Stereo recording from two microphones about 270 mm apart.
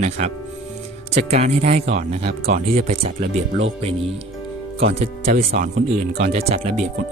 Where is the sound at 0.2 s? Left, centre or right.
Right.